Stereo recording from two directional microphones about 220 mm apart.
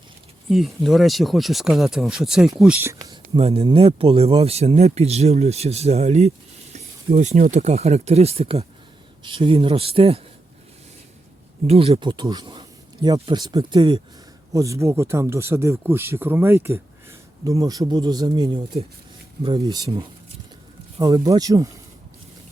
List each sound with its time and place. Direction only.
0.5 s speech: centre (ahead or behind)
3.3 s speech: 25° right (ahead or behind)
11.6 s speech: 25° right (ahead or behind)